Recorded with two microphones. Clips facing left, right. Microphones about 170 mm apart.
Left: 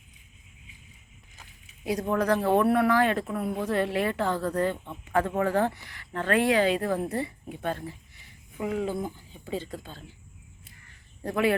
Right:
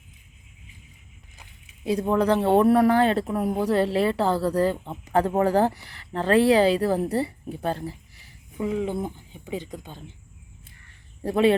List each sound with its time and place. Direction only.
1.8 s speech: 30° right (ahead or behind)
11.2 s speech: 25° right (ahead or behind)